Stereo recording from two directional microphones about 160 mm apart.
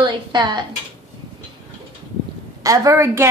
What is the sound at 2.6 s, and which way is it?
Speech, 20° right (ahead or behind).